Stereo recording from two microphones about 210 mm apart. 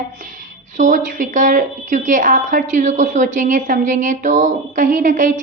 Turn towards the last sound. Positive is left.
turn(degrees=-35)  # may be behind; listen again after turning